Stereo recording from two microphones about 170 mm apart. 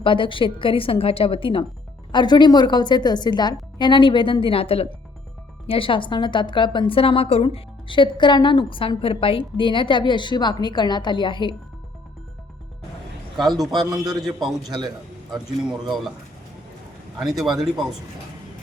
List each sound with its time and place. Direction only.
0.0 s a woman's voice: 30° left (ahead or behind)
13.3 s a man's voice: centre (ahead or behind)
13.7 s a man's voice: 25° right (ahead or behind)
17.2 s a man's voice: centre (ahead or behind)